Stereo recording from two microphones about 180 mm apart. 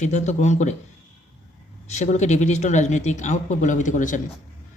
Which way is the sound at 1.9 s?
40° left (ahead or behind).